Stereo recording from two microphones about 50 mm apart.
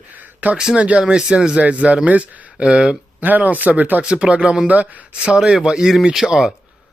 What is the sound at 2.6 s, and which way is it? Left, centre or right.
Speech, centre.